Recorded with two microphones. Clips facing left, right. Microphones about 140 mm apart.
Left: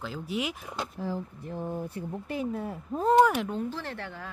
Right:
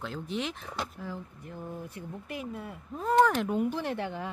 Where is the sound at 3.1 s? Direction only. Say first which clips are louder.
Left 2 dB; 15° left (ahead or behind).